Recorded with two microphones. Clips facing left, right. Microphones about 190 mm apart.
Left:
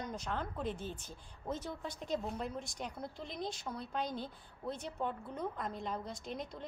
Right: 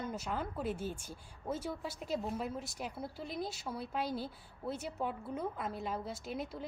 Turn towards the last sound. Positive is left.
turn(degrees=-5)  # may be behind; listen again after turning